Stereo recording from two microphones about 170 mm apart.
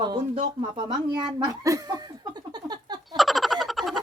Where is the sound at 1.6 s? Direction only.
20° right (ahead or behind).